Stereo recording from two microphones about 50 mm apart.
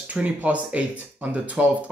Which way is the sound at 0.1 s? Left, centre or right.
Right.